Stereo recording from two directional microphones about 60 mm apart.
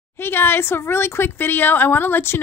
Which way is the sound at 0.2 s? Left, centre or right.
Left.